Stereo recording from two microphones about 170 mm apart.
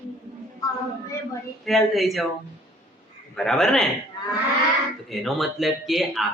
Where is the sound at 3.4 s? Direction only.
Centre (ahead or behind).